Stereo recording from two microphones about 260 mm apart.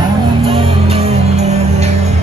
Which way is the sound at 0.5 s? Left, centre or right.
Right.